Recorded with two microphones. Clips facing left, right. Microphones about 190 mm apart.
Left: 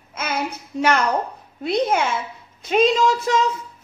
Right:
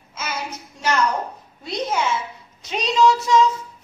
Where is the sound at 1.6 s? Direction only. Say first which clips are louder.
Left 4 dB; 55° left (ahead or behind).